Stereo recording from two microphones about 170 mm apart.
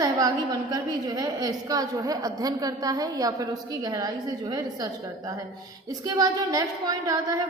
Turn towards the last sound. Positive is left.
turn(degrees=-20)  # may be behind; listen again after turning